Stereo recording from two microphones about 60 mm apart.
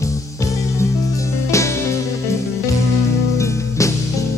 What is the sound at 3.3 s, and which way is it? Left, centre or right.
Music, left.